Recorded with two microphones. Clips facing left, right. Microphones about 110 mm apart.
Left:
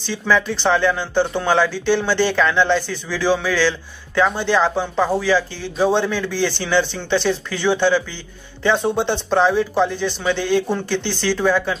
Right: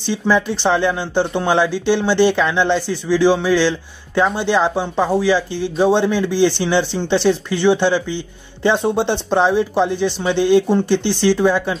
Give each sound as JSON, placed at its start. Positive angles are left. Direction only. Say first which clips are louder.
{"t": 0.0, "sound": "speech", "louder": "right 2 dB", "side_deg": -20}
{"t": 8.7, "sound": "speech", "louder": "even", "side_deg": 0}
{"t": 9.4, "sound": "speech", "louder": "right 1 dB", "side_deg": -25}